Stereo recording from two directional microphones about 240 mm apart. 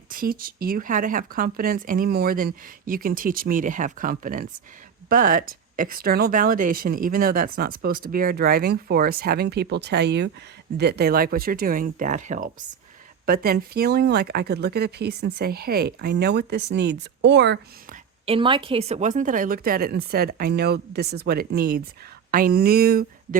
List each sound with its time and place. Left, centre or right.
0.1 s speech: right
18.3 s speech: right